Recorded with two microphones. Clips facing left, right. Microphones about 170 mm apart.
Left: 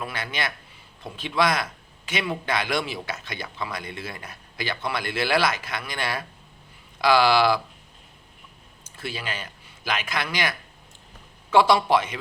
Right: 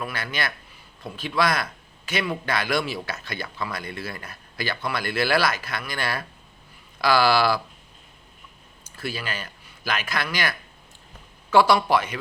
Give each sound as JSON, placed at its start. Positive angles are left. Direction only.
{"t": 0.0, "sound": "speech", "side_deg": 20}
{"t": 9.0, "sound": "speech", "side_deg": 20}
{"t": 11.5, "sound": "speech", "side_deg": 20}